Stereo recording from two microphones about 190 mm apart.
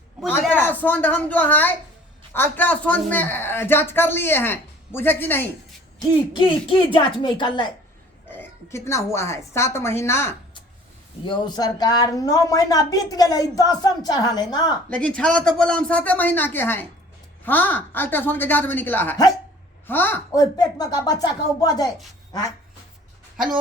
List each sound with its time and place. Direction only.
0.2 s a woman's voice: 10° left (ahead or behind)
6.0 s speech: 25° left (ahead or behind)
8.3 s speech: 10° left (ahead or behind)
14.8 s a woman's voice: 5° left (ahead or behind)
22.3 s quack: 20° left (ahead or behind)